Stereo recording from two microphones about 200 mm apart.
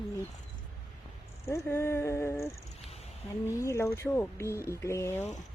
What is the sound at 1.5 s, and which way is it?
Speech, 15° left (ahead or behind).